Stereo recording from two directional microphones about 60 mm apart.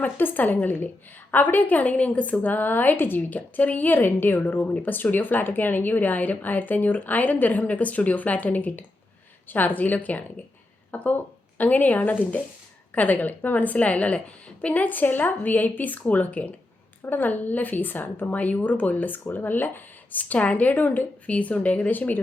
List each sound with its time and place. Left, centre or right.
0.0 s a woman's voice: left